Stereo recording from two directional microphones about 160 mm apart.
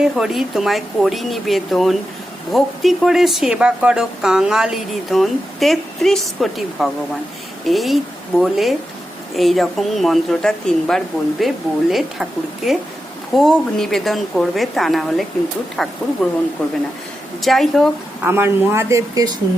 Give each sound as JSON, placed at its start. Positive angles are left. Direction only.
{"t": 0.0, "sound": "speech", "side_deg": 0}
{"t": 17.4, "sound": "speech", "side_deg": 0}
{"t": 18.2, "sound": "a woman's voice", "side_deg": -15}